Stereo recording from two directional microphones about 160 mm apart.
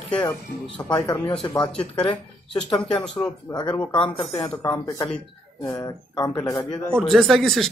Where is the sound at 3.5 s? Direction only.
25° left (ahead or behind).